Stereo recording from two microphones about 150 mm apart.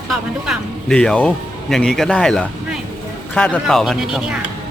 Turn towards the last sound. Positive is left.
turn(degrees=-5)  # may be behind; listen again after turning